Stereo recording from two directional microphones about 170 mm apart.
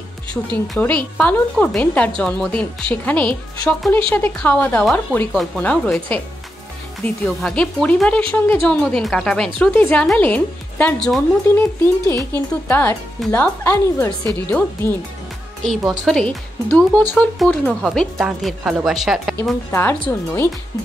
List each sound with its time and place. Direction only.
0.5 s speech: 10° left (ahead or behind)
7.2 s speech: 5° left (ahead or behind)
15.6 s speech: centre (ahead or behind)
19.7 s speech: 15° left (ahead or behind)